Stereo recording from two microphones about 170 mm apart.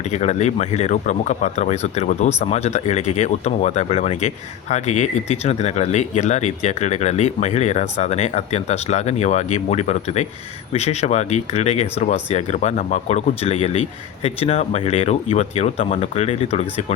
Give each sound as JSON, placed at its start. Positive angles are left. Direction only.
{"t": 0.1, "sound": "speech", "side_deg": 40}